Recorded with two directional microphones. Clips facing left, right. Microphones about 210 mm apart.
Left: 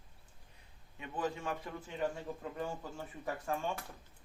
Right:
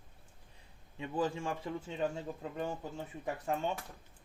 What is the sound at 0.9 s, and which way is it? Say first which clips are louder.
Speech: right 4 dB; 30° right (ahead or behind).